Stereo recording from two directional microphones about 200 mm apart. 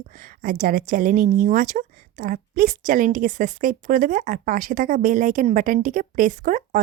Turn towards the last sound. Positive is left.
turn(degrees=-40)  # may be behind; listen again after turning